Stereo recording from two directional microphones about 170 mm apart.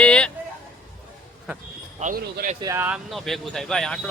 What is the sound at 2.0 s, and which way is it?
Speech, 60° right (ahead or behind).